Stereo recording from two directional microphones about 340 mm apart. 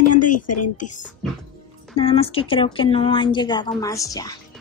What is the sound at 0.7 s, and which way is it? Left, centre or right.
Speech, left.